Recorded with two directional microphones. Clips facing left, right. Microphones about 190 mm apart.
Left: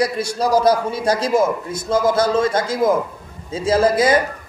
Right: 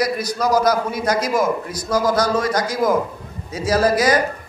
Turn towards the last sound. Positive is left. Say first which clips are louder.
# left 1 dB
turn(degrees=25)  # may be behind; listen again after turning